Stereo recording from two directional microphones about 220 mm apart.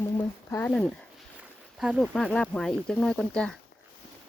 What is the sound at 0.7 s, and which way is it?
Speech, centre (ahead or behind).